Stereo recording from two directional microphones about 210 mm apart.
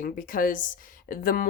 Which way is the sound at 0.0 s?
40° left (ahead or behind).